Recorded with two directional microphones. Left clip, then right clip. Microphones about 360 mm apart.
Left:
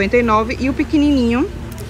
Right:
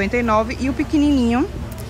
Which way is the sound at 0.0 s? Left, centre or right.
Centre.